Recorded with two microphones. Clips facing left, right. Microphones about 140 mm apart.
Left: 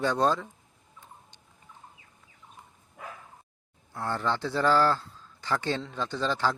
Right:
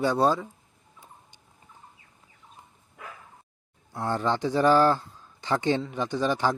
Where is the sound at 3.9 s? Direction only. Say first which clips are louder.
Right 3 dB; 15° right (ahead or behind).